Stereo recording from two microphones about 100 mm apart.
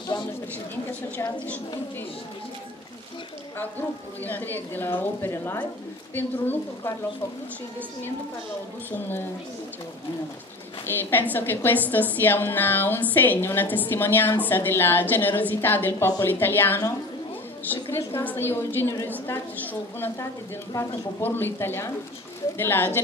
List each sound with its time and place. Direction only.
1.1 s a woman's voice: 15° left (ahead or behind)
4.2 s a woman's voice: 20° left (ahead or behind)
10.9 s a woman's voice: 20° left (ahead or behind)
17.8 s a woman's voice: 25° left (ahead or behind)
21.2 s a woman's voice: 20° left (ahead or behind)